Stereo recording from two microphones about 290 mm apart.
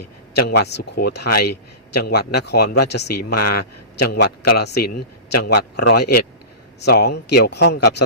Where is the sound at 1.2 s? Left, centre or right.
Left.